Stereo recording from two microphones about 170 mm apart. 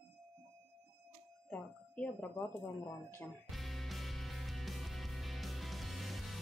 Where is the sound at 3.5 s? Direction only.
Centre (ahead or behind).